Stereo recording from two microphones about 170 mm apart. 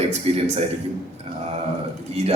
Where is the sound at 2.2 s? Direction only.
40° right (ahead or behind).